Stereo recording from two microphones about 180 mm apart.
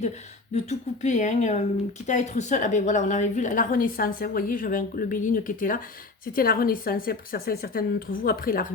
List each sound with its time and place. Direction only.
0.5 s a woman's voice: 40° left (ahead or behind)